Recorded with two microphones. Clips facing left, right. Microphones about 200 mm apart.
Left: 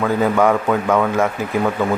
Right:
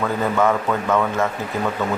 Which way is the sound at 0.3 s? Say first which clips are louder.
Left 3 dB; 15° left (ahead or behind).